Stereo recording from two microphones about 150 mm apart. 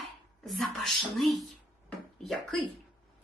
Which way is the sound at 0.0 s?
Centre (ahead or behind).